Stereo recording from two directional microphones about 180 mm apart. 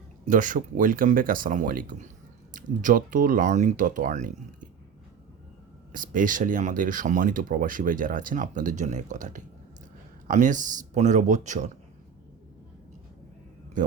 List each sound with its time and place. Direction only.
0.3 s speech: 45° right (ahead or behind)
5.9 s speech: 50° right (ahead or behind)
13.8 s speech: 45° right (ahead or behind)